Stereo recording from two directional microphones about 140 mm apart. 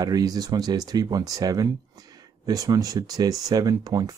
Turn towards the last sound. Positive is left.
turn(degrees=-30)  # may be behind; listen again after turning